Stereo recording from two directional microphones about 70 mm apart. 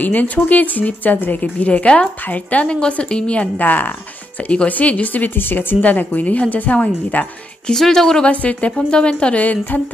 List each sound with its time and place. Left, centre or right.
0.0 s speech: left
7.6 s a woman's voice: centre
8.3 s a woman's voice: centre